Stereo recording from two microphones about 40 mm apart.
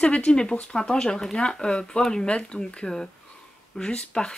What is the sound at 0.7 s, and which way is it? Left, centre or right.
Speech, centre.